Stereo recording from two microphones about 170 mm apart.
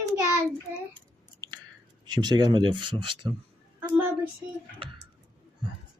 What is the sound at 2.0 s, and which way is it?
Speech, 25° right (ahead or behind).